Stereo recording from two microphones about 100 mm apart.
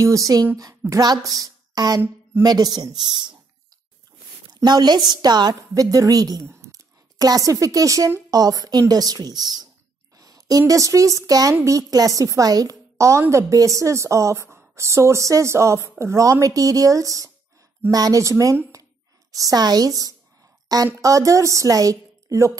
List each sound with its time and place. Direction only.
0.0 s a woman's voice: 35° right (ahead or behind)
4.6 s a woman's voice: 45° right (ahead or behind)
10.1 s a sound: 35° right (ahead or behind)
10.7 s a woman's voice: 35° right (ahead or behind)